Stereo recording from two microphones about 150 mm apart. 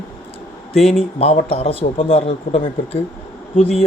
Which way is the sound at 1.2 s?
40° left (ahead or behind).